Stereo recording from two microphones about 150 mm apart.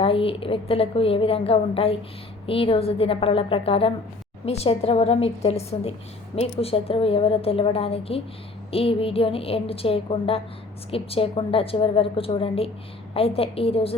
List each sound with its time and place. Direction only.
0.0 s a woman's voice: 40° left (ahead or behind)